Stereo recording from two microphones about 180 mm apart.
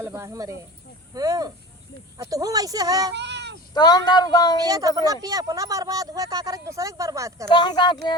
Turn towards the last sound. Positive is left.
turn(degrees=25)  # may be behind; listen again after turning